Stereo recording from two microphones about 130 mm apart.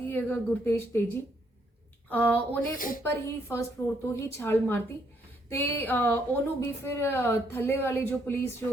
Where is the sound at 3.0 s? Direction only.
20° left (ahead or behind).